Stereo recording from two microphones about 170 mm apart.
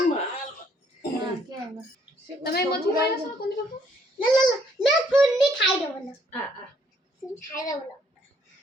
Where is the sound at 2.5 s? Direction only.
65° left (ahead or behind).